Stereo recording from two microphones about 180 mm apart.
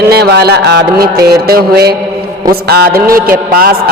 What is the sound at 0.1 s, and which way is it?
A man's voice, 65° right (ahead or behind).